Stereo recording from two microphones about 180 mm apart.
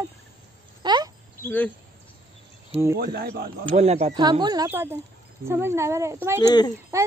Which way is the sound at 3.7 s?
35° right (ahead or behind).